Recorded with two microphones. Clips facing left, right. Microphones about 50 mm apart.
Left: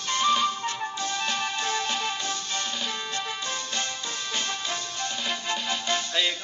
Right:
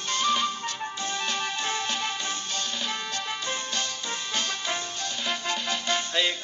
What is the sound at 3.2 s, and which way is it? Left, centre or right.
Music, right.